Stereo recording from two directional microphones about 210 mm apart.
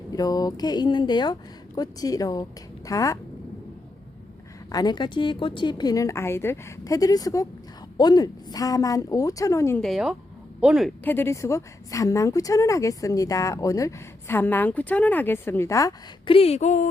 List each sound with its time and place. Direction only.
0.1 s a woman's voice: 15° left (ahead or behind)
4.7 s a woman's voice: 20° left (ahead or behind)
9.8 s speech: centre (ahead or behind)
11.0 s a woman's voice: 10° left (ahead or behind); by 16.9 s 35° left (ahead or behind)